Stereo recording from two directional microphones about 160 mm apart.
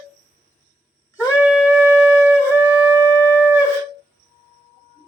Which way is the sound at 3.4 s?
10° right (ahead or behind).